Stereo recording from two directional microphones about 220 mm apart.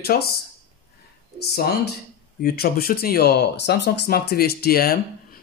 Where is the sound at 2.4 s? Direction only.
45° left (ahead or behind).